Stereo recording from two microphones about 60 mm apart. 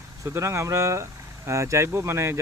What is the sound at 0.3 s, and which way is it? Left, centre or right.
Speech, right.